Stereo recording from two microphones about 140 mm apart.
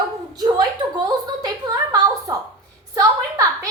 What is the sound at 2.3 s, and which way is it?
Speech, 25° right (ahead or behind).